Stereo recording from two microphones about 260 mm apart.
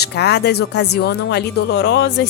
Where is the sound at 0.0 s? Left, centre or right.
Left.